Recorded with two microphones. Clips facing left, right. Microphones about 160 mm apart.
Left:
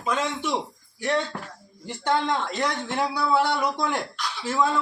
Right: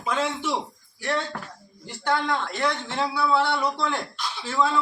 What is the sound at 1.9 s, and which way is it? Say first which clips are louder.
A man's voice: left 1 dB; 20° left (ahead or behind).